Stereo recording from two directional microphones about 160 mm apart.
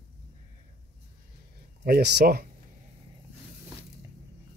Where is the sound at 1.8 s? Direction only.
80° right.